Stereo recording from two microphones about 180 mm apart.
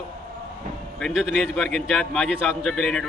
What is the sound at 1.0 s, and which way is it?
Speech, centre (ahead or behind).